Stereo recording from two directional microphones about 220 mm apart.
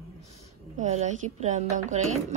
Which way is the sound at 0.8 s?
30° right (ahead or behind).